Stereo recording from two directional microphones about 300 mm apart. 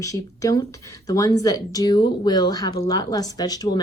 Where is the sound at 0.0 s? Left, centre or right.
Centre.